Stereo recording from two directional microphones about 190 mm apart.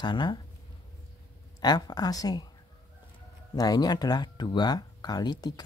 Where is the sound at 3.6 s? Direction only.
20° left (ahead or behind).